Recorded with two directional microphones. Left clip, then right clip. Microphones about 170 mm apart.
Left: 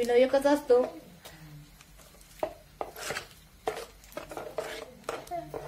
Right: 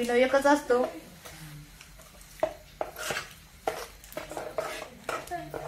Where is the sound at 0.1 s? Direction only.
30° left (ahead or behind).